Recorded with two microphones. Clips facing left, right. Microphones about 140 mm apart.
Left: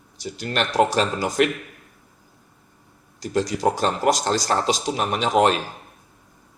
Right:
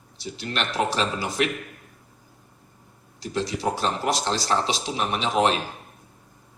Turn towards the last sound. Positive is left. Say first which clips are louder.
# left 3 dB
turn(degrees=45)  # may be behind; listen again after turning